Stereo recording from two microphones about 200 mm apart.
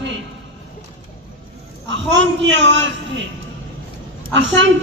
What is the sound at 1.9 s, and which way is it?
Speech, 65° right (ahead or behind).